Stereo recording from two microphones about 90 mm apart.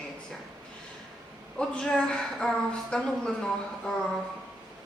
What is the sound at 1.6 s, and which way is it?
A woman's voice, 10° left (ahead or behind).